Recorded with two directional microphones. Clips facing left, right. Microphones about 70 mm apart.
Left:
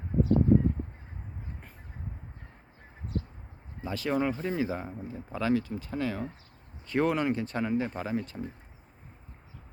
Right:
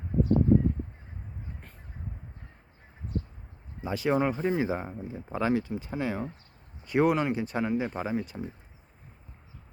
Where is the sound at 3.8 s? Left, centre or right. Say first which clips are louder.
Right 3 dB; centre.